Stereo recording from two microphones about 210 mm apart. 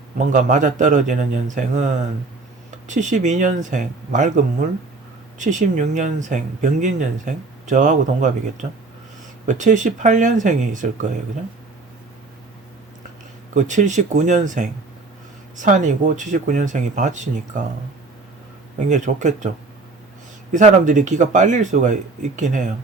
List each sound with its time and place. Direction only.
0.3 s speech: 35° right (ahead or behind)
9.5 s speech: 35° right (ahead or behind)
13.5 s speech: 35° right (ahead or behind)
18.9 s speech: 35° right (ahead or behind)
20.5 s speech: 35° right (ahead or behind)